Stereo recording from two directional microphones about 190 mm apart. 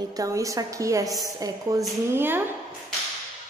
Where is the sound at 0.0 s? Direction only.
20° right (ahead or behind).